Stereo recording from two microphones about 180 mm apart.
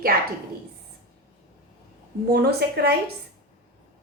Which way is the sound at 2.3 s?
60° right (ahead or behind).